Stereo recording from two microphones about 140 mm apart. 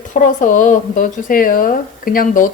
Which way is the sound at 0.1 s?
60° left (ahead or behind).